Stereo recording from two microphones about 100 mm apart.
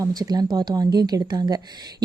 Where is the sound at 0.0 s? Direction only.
40° right (ahead or behind).